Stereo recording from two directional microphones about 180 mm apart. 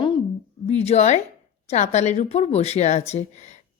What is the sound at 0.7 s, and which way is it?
A woman's voice, 35° left (ahead or behind).